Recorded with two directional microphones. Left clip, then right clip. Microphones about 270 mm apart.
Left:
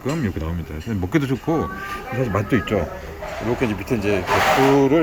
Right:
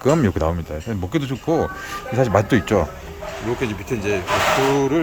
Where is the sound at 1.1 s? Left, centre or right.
Centre.